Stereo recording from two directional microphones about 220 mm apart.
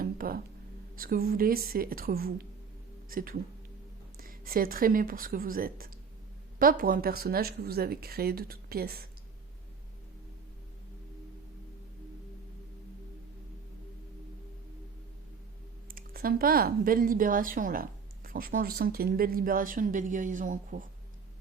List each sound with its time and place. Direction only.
0.0 s a sound: 40° right (ahead or behind)
0.9 s speech: 40° right (ahead or behind)
15.9 s speech: 40° right (ahead or behind)